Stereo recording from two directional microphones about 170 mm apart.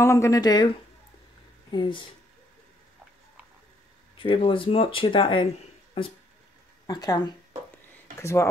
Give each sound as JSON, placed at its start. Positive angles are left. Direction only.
{"t": 0.0, "sound": "speech", "side_deg": 15}
{"t": 1.7, "sound": "speech", "side_deg": 25}
{"t": 4.2, "sound": "speech", "side_deg": 30}
{"t": 6.9, "sound": "speech", "side_deg": 25}